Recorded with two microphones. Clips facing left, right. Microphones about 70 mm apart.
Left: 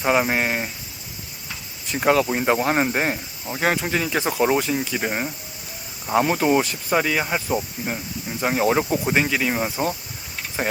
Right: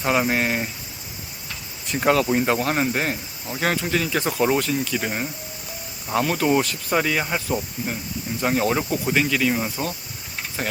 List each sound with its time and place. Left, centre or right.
0.0 s speech: centre
1.9 s speech: centre